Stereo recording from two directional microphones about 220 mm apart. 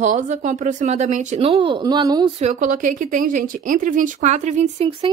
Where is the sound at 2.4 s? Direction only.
30° right (ahead or behind).